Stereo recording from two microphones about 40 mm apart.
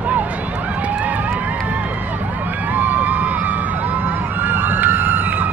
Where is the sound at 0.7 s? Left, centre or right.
Right.